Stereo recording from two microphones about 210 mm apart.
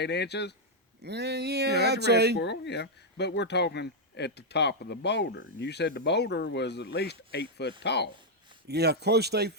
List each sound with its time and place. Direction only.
0.0 s speech: 55° left (ahead or behind)
1.0 s speech: 50° right (ahead or behind)
2.4 s speech: 55° left (ahead or behind)
8.6 s speech: 50° right (ahead or behind)